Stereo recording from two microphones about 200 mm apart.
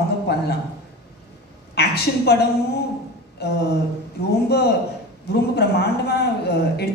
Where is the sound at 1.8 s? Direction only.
55° left (ahead or behind).